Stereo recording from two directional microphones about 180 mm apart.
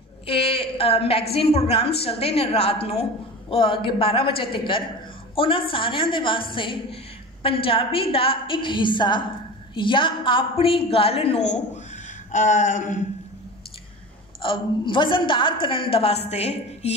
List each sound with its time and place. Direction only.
0.3 s a woman's voice: 30° left (ahead or behind)
14.4 s a woman's voice: 30° left (ahead or behind)